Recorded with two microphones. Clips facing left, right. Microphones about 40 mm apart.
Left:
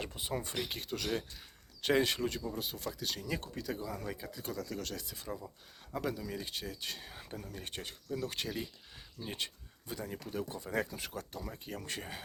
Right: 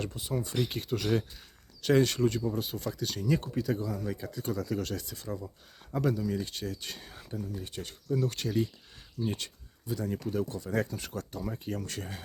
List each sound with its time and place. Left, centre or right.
0.2 s speech: left
0.7 s speech: centre
1.9 s speech: centre
2.2 s speech: centre
3.8 s speech: left
4.2 s speech: centre
5.1 s speech: centre
5.9 s speech: centre
7.3 s speech: left
7.9 s speech: centre
8.3 s speech: centre
10.1 s speech: centre
11.9 s speech: centre